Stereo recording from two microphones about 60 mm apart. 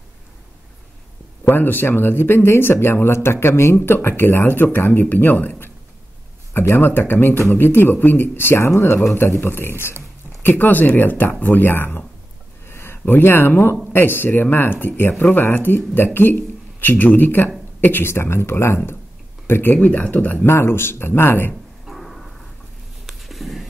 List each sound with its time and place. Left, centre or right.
1.5 s speech: left
20.4 s speech: left
21.8 s a sound: centre